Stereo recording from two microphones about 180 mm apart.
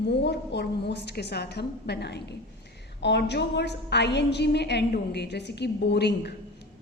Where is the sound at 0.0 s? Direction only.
70° left (ahead or behind).